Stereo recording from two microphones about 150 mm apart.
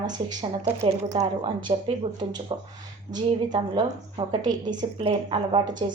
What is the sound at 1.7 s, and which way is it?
Speech, 40° right (ahead or behind).